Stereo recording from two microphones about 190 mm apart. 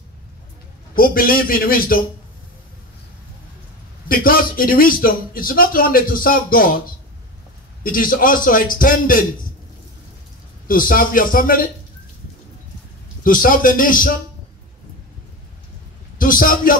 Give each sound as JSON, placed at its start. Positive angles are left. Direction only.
{"t": 0.9, "sound": "speech", "side_deg": 50}
{"t": 4.1, "sound": "speech", "side_deg": 50}
{"t": 7.8, "sound": "speech", "side_deg": 45}
{"t": 10.7, "sound": "speech", "side_deg": 45}
{"t": 13.2, "sound": "speech", "side_deg": 45}
{"t": 16.2, "sound": "a man's voice", "side_deg": 45}